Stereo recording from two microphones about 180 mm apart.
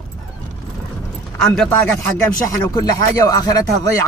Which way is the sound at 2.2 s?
20° left (ahead or behind).